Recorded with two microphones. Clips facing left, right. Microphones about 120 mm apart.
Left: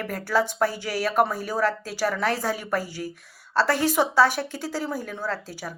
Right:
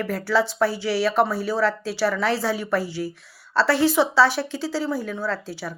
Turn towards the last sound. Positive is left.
turn(degrees=45)  # may be behind; listen again after turning